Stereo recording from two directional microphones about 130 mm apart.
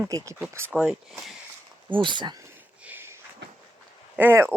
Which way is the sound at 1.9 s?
40° right (ahead or behind).